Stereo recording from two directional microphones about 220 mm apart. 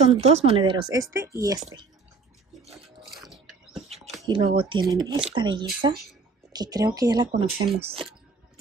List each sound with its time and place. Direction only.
0.0 s speech: 30° right (ahead or behind); by 1.6 s 15° right (ahead or behind)
3.1 s a sound: centre (ahead or behind)
4.3 s speech: 20° right (ahead or behind)